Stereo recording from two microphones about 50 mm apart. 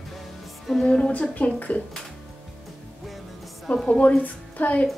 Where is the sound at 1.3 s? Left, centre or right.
Left.